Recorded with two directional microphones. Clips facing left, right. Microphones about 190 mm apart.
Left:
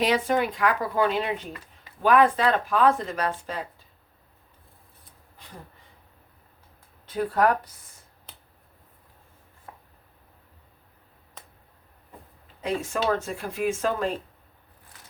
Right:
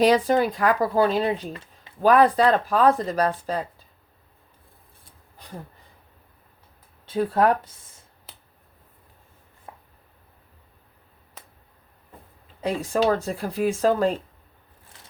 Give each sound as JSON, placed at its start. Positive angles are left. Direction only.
{"t": 0.0, "sound": "speech", "side_deg": -40}
{"t": 7.0, "sound": "speech", "side_deg": -25}
{"t": 9.7, "sound": "chopping", "side_deg": -20}
{"t": 12.6, "sound": "speech", "side_deg": -35}